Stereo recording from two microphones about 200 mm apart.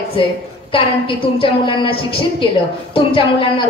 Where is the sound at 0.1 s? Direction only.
25° left (ahead or behind).